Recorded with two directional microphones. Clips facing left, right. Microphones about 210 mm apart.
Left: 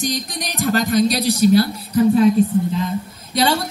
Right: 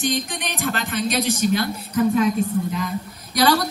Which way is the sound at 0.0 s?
35° left (ahead or behind).